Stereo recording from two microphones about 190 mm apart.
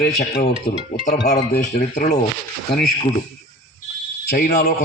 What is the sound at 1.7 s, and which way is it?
Speech, 35° left (ahead or behind).